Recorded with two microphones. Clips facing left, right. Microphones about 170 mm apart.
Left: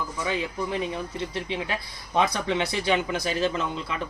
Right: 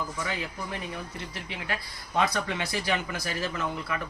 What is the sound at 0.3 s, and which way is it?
Speech, 20° left (ahead or behind).